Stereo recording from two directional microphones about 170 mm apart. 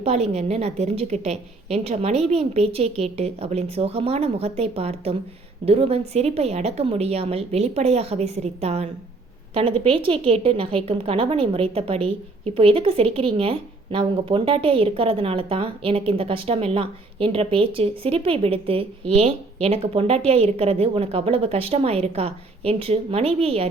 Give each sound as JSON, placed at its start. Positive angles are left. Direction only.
{"t": 0.0, "sound": "a woman's voice", "side_deg": -40}